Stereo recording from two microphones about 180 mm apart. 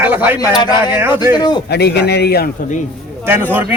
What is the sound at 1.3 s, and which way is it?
Speech, 25° left (ahead or behind).